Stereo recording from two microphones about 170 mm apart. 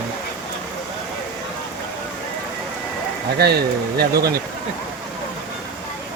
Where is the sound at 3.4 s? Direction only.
70° right (ahead or behind).